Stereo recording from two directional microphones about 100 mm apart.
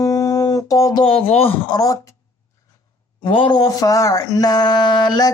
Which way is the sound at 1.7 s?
35° left (ahead or behind).